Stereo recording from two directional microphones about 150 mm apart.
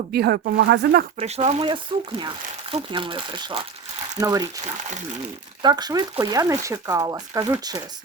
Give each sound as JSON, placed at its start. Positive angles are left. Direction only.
{"t": 0.1, "sound": "speech", "side_deg": -90}
{"t": 1.2, "sound": "speech", "side_deg": -45}
{"t": 5.6, "sound": "speech", "side_deg": -25}